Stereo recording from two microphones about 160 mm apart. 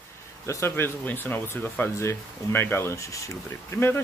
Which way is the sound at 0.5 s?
15° left (ahead or behind).